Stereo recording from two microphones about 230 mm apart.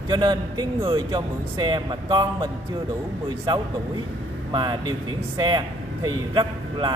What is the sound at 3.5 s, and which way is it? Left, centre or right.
Speech, centre.